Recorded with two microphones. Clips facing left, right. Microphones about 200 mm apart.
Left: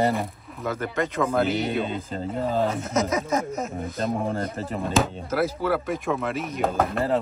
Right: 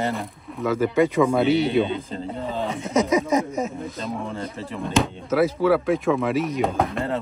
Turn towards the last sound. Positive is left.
turn(degrees=0)  # may be behind; listen again after turning